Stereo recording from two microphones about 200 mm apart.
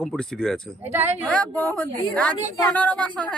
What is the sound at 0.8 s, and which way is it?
Speech, 10° right (ahead or behind).